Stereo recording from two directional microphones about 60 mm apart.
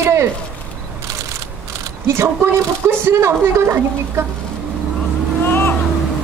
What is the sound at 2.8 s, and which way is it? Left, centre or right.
Speech, right.